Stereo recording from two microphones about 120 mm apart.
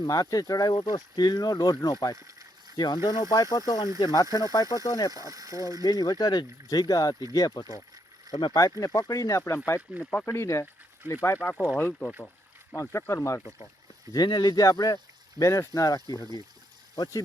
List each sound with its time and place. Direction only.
0.0 s speech: 30° left (ahead or behind)
5.1 s speech: 30° right (ahead or behind)
5.8 s speech: 30° left (ahead or behind)
10.0 s speech: 5° left (ahead or behind)
10.2 s speech: 25° left (ahead or behind)
11.5 s speech: 5° right (ahead or behind)
11.8 s speech: 15° left (ahead or behind)
14.1 s speech: 35° left (ahead or behind)